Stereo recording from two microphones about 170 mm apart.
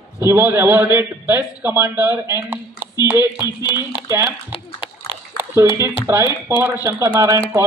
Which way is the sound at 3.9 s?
15° right (ahead or behind).